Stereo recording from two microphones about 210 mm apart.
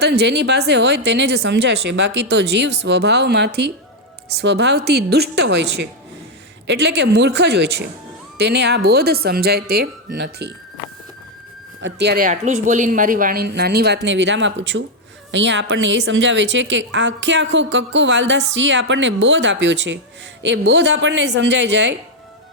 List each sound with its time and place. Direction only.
0.0 s speech: 50° right (ahead or behind)
11.8 s a woman's voice: 55° right (ahead or behind)